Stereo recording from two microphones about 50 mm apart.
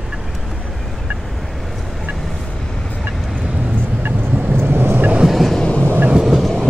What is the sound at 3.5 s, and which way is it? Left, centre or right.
Vehicle, centre.